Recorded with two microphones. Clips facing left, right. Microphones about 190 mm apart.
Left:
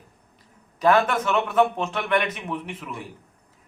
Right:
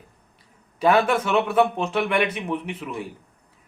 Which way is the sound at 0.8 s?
10° right (ahead or behind).